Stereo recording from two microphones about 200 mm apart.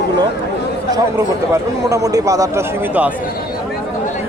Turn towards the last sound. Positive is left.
turn(degrees=-10)  # may be behind; listen again after turning